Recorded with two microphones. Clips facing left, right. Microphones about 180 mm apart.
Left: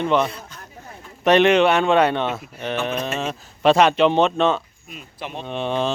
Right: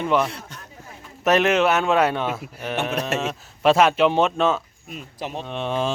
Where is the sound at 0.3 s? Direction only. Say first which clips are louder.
Left 1 dB; 75° right (ahead or behind).